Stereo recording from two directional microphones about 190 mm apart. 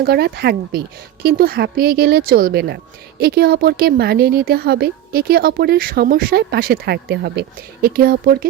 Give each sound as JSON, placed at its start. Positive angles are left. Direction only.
{"t": 0.0, "sound": "a woman's voice", "side_deg": -55}